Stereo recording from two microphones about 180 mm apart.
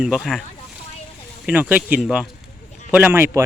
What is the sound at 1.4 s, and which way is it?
Speech, 10° right (ahead or behind).